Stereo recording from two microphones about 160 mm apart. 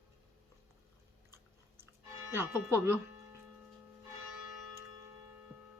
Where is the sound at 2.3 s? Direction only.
15° right (ahead or behind).